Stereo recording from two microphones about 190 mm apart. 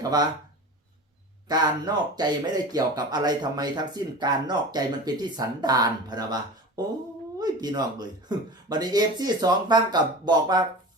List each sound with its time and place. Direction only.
1.5 s speech: 20° right (ahead or behind)